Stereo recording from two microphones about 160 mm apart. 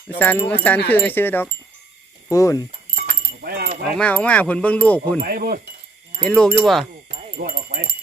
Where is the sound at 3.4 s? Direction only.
70° right (ahead or behind).